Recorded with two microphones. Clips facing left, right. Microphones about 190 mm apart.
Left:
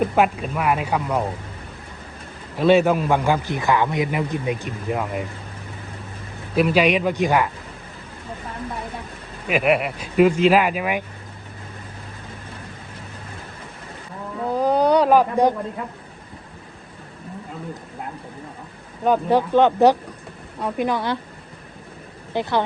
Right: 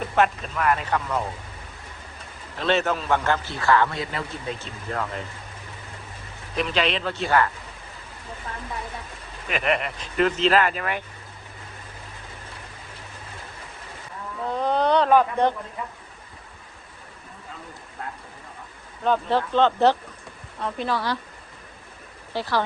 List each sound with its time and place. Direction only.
0.2 s a man's voice: 10° left (ahead or behind)
2.6 s a man's voice: 10° left (ahead or behind)
6.6 s a man's voice: 10° left (ahead or behind)
9.5 s a man's voice: 5° left (ahead or behind)
14.4 s a sound: 10° left (ahead or behind)
19.0 s a man's voice: 10° left (ahead or behind)
22.3 s speech: 20° left (ahead or behind)